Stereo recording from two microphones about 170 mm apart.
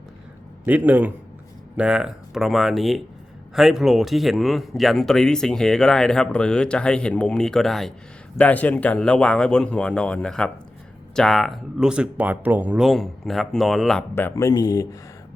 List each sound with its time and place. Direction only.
0.6 s a man's voice: 10° right (ahead or behind)
14.2 s speech: 15° left (ahead or behind)